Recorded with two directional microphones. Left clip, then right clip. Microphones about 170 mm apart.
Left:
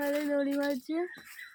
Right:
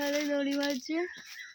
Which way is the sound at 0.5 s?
15° right (ahead or behind).